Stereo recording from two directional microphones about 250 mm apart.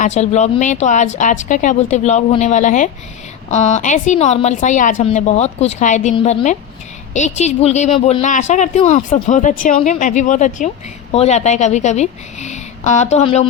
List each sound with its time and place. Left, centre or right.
0.0 s speech: left